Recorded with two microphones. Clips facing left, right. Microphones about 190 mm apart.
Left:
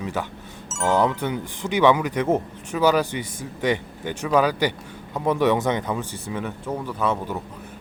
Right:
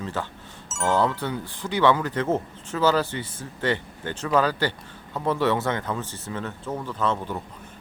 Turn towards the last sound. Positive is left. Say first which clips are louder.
# left 2 dB
turn(degrees=10)  # may be behind; listen again after turning